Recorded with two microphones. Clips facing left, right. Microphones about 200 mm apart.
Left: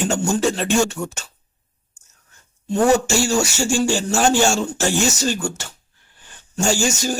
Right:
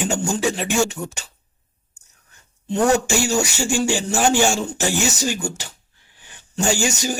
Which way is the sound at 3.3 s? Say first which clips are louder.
Left 2 dB; 15° right (ahead or behind).